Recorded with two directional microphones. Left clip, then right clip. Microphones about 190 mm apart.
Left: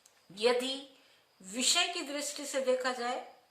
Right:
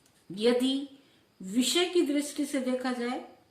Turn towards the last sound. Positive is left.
turn(degrees=20)  # may be behind; listen again after turning